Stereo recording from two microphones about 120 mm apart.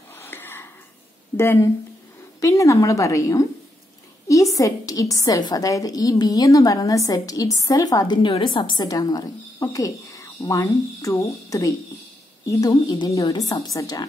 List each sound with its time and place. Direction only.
0.1 s a sound: 20° left (ahead or behind)
1.3 s a woman's voice: 20° left (ahead or behind)
4.6 s a woman's voice: 30° left (ahead or behind)